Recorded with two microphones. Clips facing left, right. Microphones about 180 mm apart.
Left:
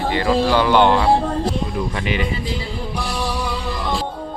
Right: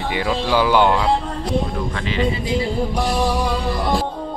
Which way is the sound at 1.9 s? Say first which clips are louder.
Even; 15° left (ahead or behind).